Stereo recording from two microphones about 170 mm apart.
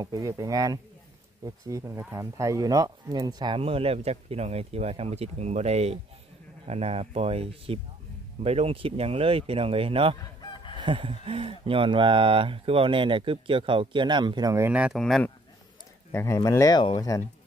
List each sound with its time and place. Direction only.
0.0 s speech: 20° right (ahead or behind)
10.1 s chicken: 25° left (ahead or behind)
10.8 s a man's voice: 30° right (ahead or behind); by 15.2 s centre (ahead or behind)
16.1 s speech: 15° left (ahead or behind)